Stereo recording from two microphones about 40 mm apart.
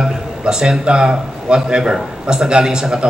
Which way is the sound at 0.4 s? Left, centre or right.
Right.